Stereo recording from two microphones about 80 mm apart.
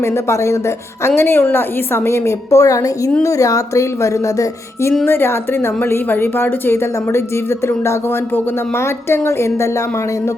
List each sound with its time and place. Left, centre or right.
0.0 s a woman's voice: left
9.0 s a woman's voice: left